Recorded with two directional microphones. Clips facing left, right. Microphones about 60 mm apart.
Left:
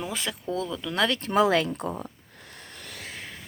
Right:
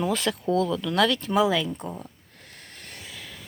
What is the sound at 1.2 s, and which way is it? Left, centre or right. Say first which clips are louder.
Speech: left 1 dB; left.